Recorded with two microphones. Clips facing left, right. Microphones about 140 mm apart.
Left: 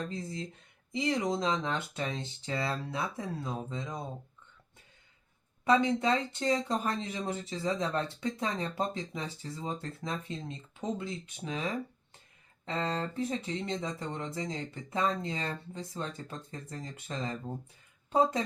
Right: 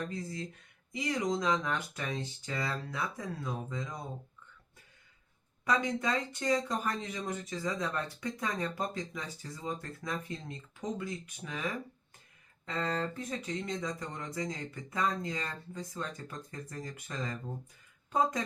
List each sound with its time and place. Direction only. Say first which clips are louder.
0.1 s speech: left 1 dB; 25° left (ahead or behind)
5.6 s speech: left 5 dB; 25° left (ahead or behind)